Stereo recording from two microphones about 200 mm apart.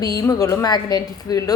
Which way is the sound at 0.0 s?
15° left (ahead or behind).